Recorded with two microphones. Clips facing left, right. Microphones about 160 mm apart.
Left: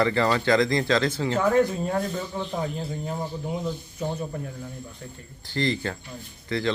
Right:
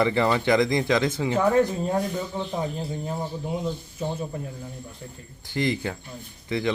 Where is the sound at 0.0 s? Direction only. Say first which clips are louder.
Right 1 dB; 20° right (ahead or behind).